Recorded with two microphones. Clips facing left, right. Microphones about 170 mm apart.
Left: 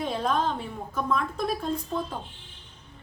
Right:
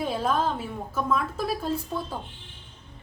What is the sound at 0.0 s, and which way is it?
A woman's voice, 5° right (ahead or behind).